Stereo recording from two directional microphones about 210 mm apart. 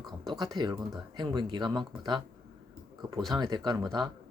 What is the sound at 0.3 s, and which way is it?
Speech, 20° right (ahead or behind).